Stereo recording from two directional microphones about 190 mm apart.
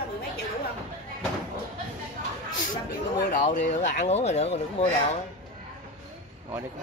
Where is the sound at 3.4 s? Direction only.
40° left (ahead or behind).